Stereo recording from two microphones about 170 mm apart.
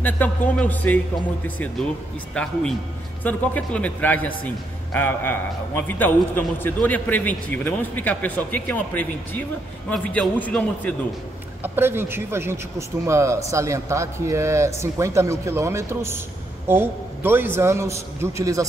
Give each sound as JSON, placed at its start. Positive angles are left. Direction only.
{"t": 0.0, "sound": "a man's voice", "side_deg": 10}
{"t": 2.3, "sound": "a man's voice", "side_deg": 5}
{"t": 11.6, "sound": "speech", "side_deg": -15}